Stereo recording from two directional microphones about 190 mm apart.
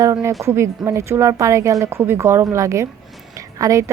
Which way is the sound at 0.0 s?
15° right (ahead or behind).